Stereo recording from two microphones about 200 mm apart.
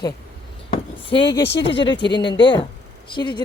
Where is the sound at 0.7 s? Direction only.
25° left (ahead or behind).